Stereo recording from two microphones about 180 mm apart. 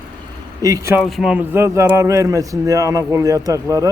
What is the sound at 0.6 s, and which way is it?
Speech, 20° right (ahead or behind).